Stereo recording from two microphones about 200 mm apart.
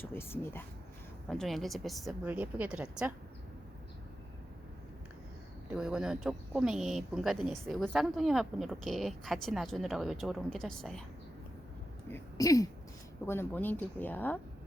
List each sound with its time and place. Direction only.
0.0 s speech: 10° left (ahead or behind); by 3.1 s 5° right (ahead or behind)
5.7 s speech: 5° right (ahead or behind)
12.0 s speech: 15° left (ahead or behind)